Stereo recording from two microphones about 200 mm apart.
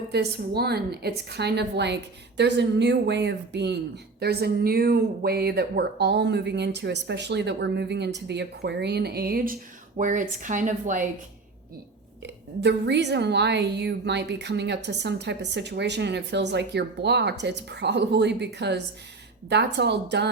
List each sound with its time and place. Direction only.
0.1 s a woman's voice: 55° right (ahead or behind)
12.2 s a woman's voice: 60° right (ahead or behind)